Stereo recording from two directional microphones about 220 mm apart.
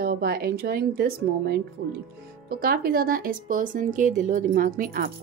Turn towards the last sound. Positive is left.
turn(degrees=-40)  # may be behind; listen again after turning